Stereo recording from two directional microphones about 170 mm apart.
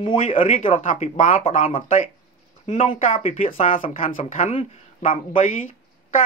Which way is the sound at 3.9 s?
50° left (ahead or behind).